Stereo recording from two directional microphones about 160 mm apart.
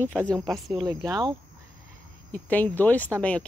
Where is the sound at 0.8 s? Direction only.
20° right (ahead or behind).